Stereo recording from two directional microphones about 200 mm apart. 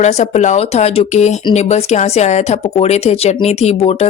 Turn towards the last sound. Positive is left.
turn(degrees=30)  # may be behind; listen again after turning